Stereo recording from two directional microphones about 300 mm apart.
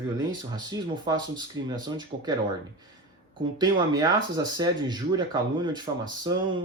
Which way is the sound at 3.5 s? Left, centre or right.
Centre.